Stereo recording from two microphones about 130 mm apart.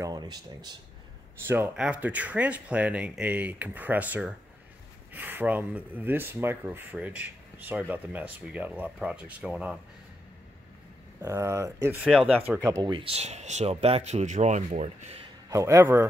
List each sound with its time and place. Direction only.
0.0 s speech: 30° right (ahead or behind)
1.5 s speech: 15° right (ahead or behind)
11.2 s speech: 20° right (ahead or behind)
12.0 s speech: 5° right (ahead or behind)
12.4 s speech: 15° right (ahead or behind)
12.9 s speech: 50° right (ahead or behind)
15.5 s speech: 20° right (ahead or behind)